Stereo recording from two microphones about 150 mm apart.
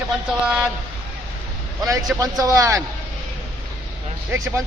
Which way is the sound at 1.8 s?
20° right (ahead or behind).